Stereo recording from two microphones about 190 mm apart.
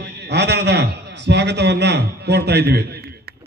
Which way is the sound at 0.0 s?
65° right (ahead or behind).